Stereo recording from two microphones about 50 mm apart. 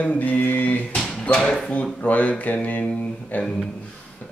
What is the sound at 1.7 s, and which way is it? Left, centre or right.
Speech, left.